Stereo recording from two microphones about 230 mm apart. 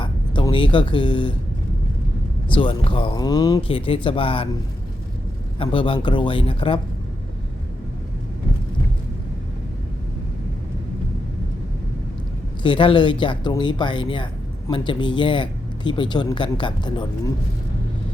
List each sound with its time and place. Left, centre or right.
0.0 s a sound: left
2.6 s speech: left
5.5 s speech: left
12.6 s speech: left